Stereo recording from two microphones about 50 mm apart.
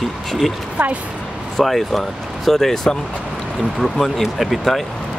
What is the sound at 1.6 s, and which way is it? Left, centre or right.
Speech, centre.